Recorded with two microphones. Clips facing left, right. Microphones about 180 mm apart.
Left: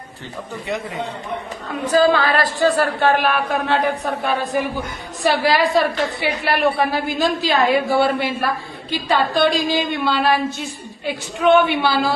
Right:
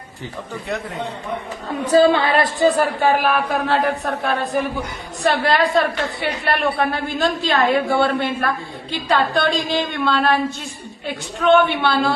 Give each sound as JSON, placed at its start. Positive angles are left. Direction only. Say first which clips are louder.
{"t": 1.9, "sound": "a woman's voice", "louder": "right 2 dB", "side_deg": -30}